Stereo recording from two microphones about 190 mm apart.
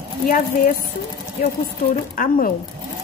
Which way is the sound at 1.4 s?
50° left (ahead or behind).